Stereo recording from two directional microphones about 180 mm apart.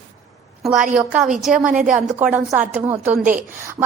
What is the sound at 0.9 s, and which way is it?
A woman's voice, 5° right (ahead or behind).